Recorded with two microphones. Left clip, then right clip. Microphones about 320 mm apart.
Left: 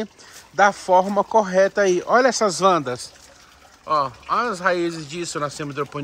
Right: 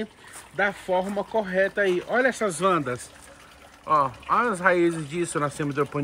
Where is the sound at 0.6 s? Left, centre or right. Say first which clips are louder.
Left 9 dB; left.